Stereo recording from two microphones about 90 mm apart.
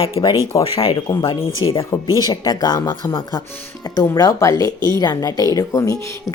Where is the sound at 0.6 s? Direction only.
90° left.